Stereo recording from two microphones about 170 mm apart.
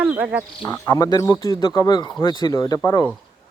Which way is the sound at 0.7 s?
20° left (ahead or behind).